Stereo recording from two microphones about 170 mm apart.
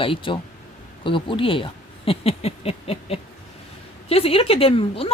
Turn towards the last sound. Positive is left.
turn(degrees=35)  # may be behind; listen again after turning